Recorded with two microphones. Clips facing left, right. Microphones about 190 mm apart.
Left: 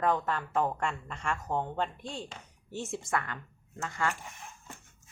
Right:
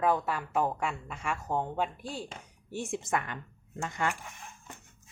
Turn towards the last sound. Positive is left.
turn(degrees=-20)  # may be behind; listen again after turning